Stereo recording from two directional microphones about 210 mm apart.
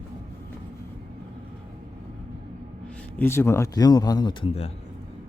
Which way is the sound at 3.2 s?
10° left (ahead or behind).